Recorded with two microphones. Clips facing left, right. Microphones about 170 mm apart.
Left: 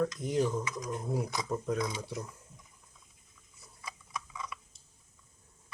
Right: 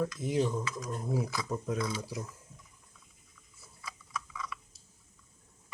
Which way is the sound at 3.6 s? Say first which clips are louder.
Left 1 dB; 20° left (ahead or behind).